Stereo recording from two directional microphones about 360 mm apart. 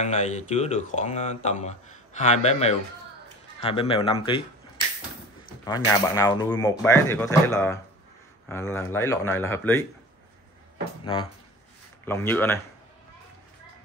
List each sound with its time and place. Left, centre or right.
0.0 s speech: centre
12.1 s speech: centre